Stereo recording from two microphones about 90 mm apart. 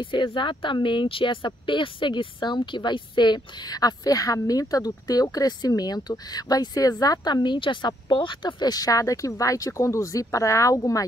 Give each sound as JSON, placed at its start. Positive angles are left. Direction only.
{"t": 0.0, "sound": "speech", "side_deg": 65}